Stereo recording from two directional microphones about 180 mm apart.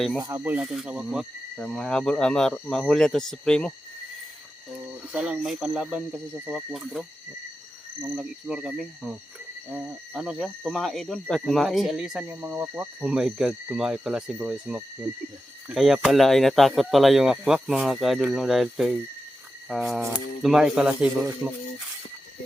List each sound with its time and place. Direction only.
0.2 s speech: 15° right (ahead or behind); by 3.7 s 5° left (ahead or behind)
5.1 s speech: centre (ahead or behind)
8.0 s speech: 5° right (ahead or behind)
19.6 s cricket: centre (ahead or behind)
20.0 s speech: 15° right (ahead or behind)
20.4 s speech: 5° right (ahead or behind)